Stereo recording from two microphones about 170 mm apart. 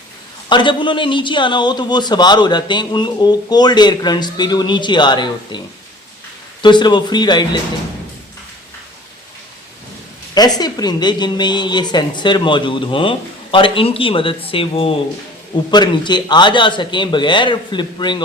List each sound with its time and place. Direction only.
0.4 s a man's voice: 30° left (ahead or behind)
10.3 s a man's voice: 25° left (ahead or behind)